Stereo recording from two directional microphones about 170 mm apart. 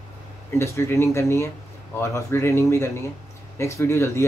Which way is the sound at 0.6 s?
15° left (ahead or behind).